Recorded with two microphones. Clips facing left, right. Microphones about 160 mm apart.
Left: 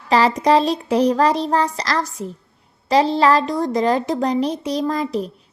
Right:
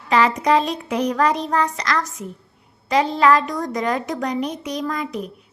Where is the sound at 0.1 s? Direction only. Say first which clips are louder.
Left 2 dB; 35° left (ahead or behind).